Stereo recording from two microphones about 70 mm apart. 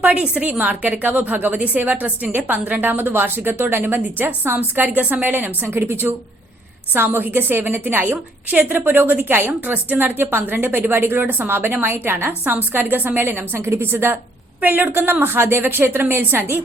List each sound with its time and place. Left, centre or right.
0.0 s a woman's voice: centre; by 16.6 s right